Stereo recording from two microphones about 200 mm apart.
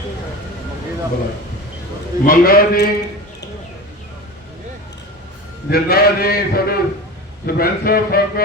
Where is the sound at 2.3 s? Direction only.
45° left (ahead or behind).